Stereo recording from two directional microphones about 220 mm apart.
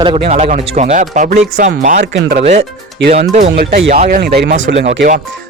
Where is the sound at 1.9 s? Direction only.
50° right (ahead or behind).